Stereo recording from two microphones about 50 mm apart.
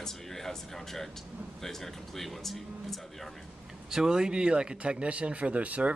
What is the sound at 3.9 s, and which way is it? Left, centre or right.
Speech, centre.